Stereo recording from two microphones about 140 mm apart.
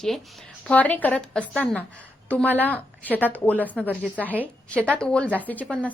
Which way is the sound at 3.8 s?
10° left (ahead or behind).